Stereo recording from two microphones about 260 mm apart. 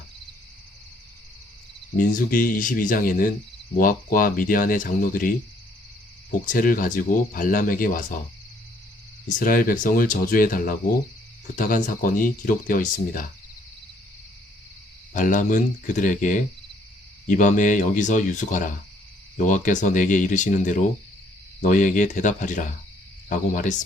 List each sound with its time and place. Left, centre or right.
2.0 s speech: left
6.4 s speech: left
9.4 s speech: left
15.1 s speech: left